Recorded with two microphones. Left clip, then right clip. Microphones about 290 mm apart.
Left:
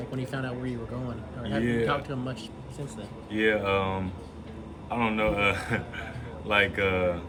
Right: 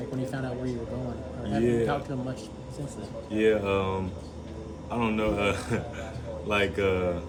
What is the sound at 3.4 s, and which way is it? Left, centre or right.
Speech, centre.